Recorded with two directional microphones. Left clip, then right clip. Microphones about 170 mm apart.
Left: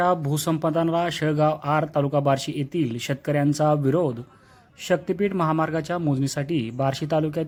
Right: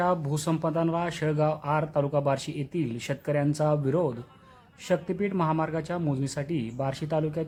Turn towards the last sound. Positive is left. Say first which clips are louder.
# left 5 dB
turn(degrees=25)  # may be behind; listen again after turning